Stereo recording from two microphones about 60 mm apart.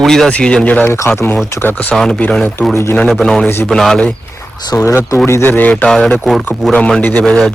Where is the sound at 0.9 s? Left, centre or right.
Left.